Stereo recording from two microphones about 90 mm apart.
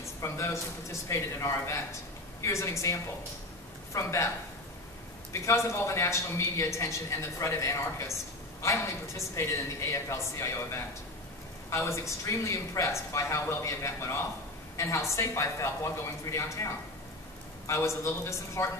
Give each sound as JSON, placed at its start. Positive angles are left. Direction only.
{"t": 0.0, "sound": "a man's voice", "side_deg": 30}
{"t": 5.3, "sound": "a man's voice", "side_deg": 30}